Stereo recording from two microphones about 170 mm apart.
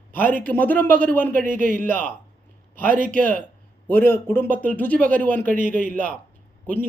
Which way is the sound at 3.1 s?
10° left (ahead or behind).